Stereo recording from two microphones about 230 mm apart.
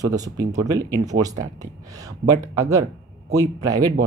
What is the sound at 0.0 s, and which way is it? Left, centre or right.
Speech, centre.